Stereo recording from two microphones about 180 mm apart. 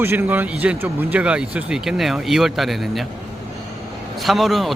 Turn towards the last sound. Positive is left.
turn(degrees=0)  # may be behind; listen again after turning